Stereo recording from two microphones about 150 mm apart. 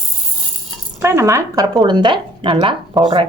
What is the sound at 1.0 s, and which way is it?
Speech, 20° right (ahead or behind).